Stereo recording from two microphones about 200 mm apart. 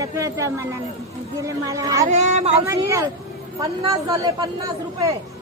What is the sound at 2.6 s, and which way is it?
Speech, 15° right (ahead or behind).